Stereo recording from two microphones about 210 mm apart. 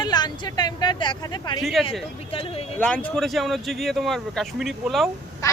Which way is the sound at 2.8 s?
5° left (ahead or behind).